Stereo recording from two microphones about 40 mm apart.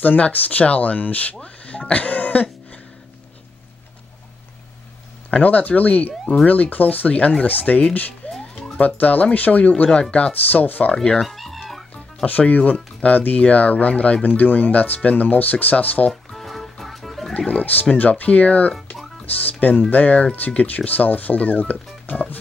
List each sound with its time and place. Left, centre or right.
0.0 s speech: left
1.4 s speech: left
5.3 s speech: left
8.2 s music: left
8.7 s speech: left
11.1 s fowl: centre
12.3 s speech: left
16.1 s music: centre
17.5 s speech: left
20.3 s speech: left